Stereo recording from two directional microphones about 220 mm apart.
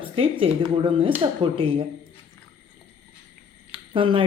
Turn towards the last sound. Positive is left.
turn(degrees=-20)  # may be behind; listen again after turning